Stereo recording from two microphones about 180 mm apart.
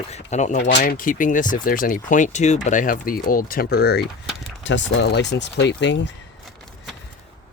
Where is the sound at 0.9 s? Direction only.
50° left (ahead or behind).